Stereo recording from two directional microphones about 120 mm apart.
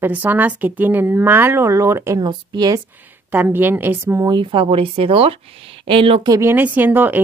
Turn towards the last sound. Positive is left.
turn(degrees=-15)  # may be behind; listen again after turning